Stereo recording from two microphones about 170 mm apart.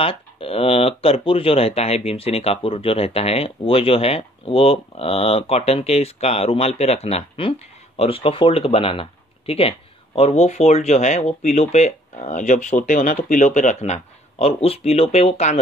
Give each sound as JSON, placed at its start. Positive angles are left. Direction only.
{"t": 0.0, "sound": "speech", "side_deg": 35}